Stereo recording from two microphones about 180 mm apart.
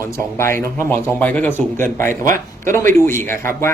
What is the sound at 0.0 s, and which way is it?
Speech, 15° left (ahead or behind).